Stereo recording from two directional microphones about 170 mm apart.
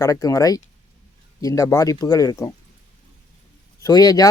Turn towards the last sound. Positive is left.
turn(degrees=20)  # may be behind; listen again after turning